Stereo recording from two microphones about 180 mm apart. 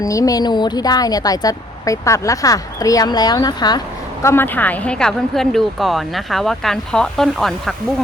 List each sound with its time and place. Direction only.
0.0 s speech: 20° left (ahead or behind); by 7.8 s centre (ahead or behind)